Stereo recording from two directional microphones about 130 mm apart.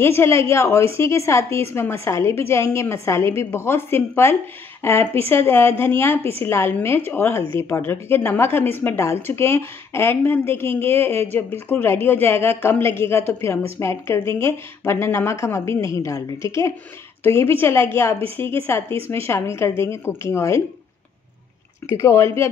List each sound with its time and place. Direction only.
0.0 s a woman's voice: 20° left (ahead or behind)
21.8 s a woman's voice: 20° left (ahead or behind)